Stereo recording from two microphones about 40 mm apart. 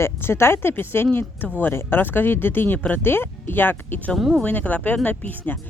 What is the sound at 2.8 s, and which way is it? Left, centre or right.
Speech, left.